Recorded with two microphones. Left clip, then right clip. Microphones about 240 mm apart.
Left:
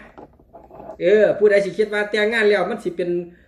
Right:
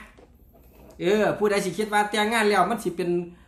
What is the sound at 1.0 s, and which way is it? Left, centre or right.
Speech, right.